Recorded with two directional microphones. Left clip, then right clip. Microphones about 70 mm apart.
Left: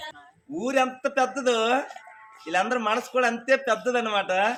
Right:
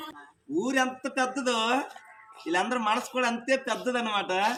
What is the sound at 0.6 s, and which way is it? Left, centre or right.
Speech, left.